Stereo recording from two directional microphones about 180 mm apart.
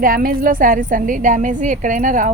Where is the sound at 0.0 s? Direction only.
50° right (ahead or behind).